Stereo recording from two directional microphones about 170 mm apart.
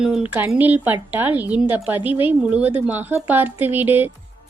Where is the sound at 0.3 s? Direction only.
10° right (ahead or behind).